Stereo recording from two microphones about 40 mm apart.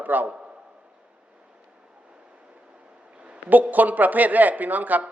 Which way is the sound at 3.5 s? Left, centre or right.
Right.